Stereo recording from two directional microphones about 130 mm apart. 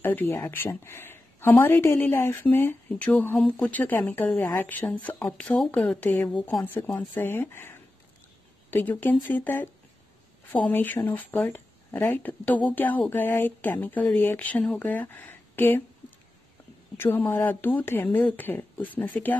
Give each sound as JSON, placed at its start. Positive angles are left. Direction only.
{"t": 0.0, "sound": "speech", "side_deg": 15}
{"t": 16.9, "sound": "speech", "side_deg": 15}